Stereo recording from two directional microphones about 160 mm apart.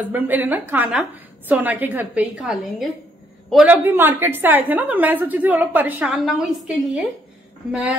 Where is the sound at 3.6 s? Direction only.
15° right (ahead or behind).